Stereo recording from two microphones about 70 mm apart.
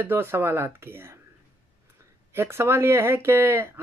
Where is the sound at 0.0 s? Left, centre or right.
Right.